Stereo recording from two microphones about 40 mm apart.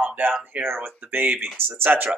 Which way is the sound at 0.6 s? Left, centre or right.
Right.